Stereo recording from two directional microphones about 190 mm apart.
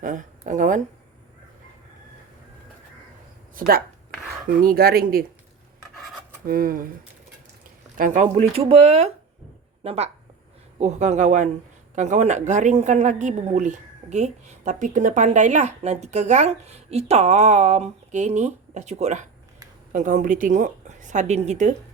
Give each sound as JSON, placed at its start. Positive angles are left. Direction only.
{"t": 0.0, "sound": "a sound", "side_deg": -40}
{"t": 3.5, "sound": "speech", "side_deg": -50}
{"t": 6.4, "sound": "speech", "side_deg": -50}
{"t": 7.9, "sound": "a woman's voice", "side_deg": -40}